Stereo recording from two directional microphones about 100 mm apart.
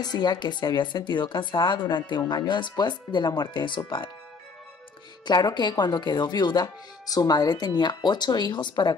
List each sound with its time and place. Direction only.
0.0 s speech: 45° left (ahead or behind)
5.2 s speech: 45° left (ahead or behind)